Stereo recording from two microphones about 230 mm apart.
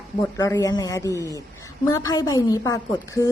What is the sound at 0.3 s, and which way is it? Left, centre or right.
A woman's voice, centre.